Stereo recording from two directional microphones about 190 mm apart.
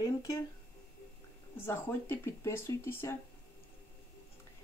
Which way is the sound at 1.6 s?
10° left (ahead or behind).